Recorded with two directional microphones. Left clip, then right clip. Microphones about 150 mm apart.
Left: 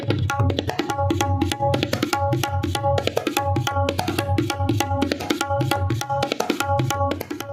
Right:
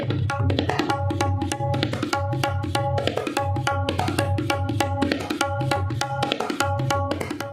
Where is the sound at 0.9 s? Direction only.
60° left (ahead or behind).